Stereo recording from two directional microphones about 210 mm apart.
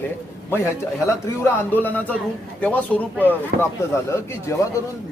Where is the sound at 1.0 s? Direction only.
10° left (ahead or behind).